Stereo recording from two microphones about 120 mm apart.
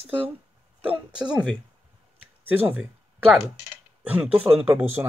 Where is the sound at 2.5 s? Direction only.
15° right (ahead or behind).